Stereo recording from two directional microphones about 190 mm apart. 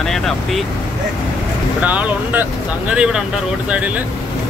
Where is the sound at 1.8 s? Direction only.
10° right (ahead or behind).